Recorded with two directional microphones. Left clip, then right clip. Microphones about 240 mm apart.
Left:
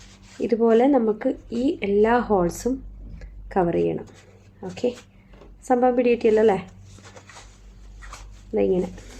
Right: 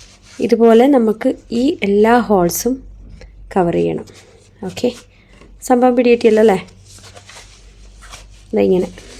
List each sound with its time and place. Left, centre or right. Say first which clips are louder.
0.4 s speech: right 8 dB; right
3.2 s a sound: right 6 dB; right
4.6 s a woman's voice: right 6 dB; right
8.5 s a woman's voice: right 8 dB; right